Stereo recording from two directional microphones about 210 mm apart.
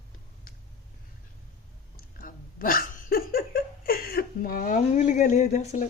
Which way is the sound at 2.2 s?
40° left (ahead or behind).